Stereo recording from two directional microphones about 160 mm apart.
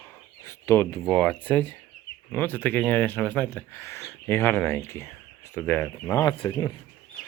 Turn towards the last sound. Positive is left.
turn(degrees=20)  # may be behind; listen again after turning